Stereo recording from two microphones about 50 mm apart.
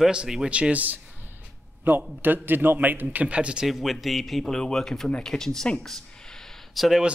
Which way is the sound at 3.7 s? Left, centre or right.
Centre.